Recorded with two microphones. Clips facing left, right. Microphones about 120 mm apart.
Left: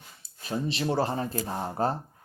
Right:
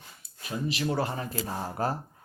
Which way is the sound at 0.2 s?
30° left (ahead or behind).